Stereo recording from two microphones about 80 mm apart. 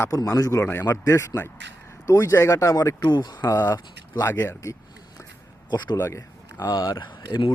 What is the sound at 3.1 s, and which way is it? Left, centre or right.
Speech, left.